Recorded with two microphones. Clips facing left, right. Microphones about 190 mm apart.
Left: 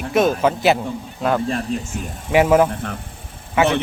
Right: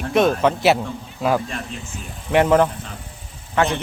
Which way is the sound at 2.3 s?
5° left (ahead or behind).